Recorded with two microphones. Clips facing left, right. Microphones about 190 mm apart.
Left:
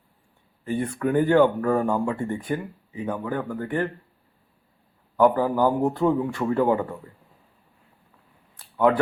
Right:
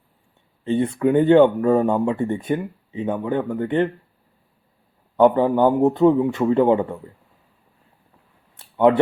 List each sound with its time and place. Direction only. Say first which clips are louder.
0.6 s speech: right 6 dB; 25° right (ahead or behind)
5.1 s speech: right 4 dB; 25° right (ahead or behind)
8.6 s a sound: right 3 dB; 25° right (ahead or behind)